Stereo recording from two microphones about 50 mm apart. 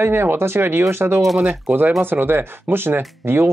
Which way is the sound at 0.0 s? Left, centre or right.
Right.